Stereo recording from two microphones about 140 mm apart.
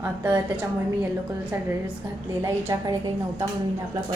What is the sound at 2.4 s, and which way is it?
Speech, 25° right (ahead or behind).